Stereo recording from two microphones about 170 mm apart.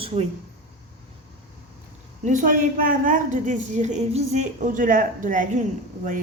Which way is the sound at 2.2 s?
50° right (ahead or behind).